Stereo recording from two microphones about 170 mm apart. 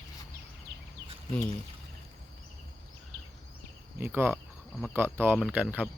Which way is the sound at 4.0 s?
15° right (ahead or behind).